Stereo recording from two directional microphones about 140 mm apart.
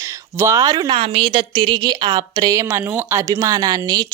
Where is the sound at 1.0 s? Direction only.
40° right (ahead or behind).